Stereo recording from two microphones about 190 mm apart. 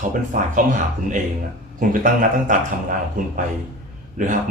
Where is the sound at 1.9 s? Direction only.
45° right (ahead or behind).